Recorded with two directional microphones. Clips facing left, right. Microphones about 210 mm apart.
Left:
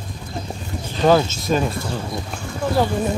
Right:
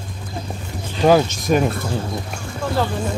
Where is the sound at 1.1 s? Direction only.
15° right (ahead or behind).